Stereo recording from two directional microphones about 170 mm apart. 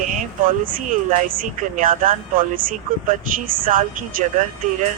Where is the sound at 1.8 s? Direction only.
55° right (ahead or behind).